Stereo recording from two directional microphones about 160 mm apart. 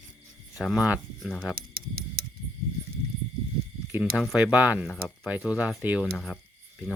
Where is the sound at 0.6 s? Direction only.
5° right (ahead or behind).